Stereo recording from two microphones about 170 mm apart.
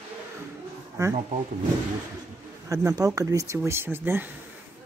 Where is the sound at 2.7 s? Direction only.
20° right (ahead or behind).